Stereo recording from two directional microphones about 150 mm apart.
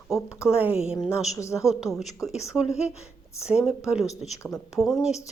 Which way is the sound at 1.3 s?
20° left (ahead or behind).